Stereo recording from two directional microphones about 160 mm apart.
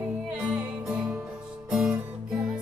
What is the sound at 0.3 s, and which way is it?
Music, 5° right (ahead or behind).